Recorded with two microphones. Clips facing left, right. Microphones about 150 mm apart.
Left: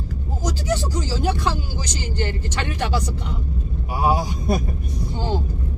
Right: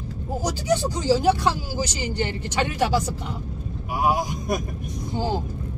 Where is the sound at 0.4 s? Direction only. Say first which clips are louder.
Right 1 dB; 10° right (ahead or behind).